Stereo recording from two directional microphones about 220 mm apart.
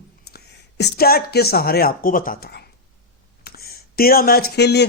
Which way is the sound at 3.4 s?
45° left (ahead or behind).